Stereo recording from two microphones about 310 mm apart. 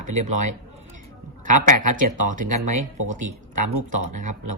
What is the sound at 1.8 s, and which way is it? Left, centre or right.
Speech, right.